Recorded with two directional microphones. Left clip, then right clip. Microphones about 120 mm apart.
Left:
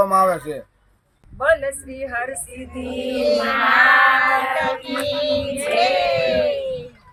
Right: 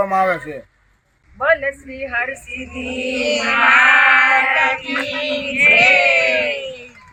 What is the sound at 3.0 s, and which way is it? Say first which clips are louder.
Speech: right 1 dB; centre (ahead or behind).